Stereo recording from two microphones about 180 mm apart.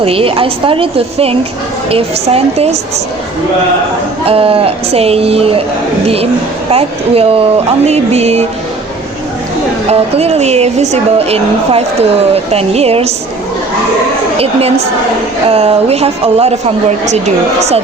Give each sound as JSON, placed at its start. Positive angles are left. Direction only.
{"t": 0.0, "sound": "a woman's voice", "side_deg": -30}
{"t": 4.3, "sound": "a woman's voice", "side_deg": -30}
{"t": 6.7, "sound": "a woman's voice", "side_deg": -35}
{"t": 9.9, "sound": "a woman's voice", "side_deg": -35}
{"t": 14.3, "sound": "a woman's voice", "side_deg": -35}